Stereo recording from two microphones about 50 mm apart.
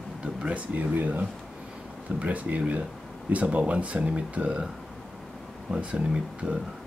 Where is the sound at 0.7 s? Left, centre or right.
Right.